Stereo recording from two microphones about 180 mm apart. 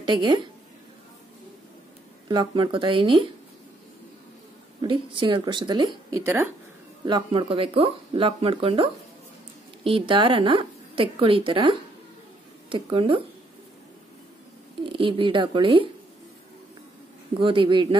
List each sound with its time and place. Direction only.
0.0 s a woman's voice: 25° right (ahead or behind)
2.2 s a woman's voice: 25° right (ahead or behind)
4.8 s a woman's voice: 30° right (ahead or behind)
7.1 s a woman's voice: 25° right (ahead or behind)
14.8 s a woman's voice: 30° right (ahead or behind)
17.3 s a woman's voice: 30° right (ahead or behind)